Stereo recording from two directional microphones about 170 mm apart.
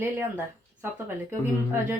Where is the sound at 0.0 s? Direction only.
15° right (ahead or behind).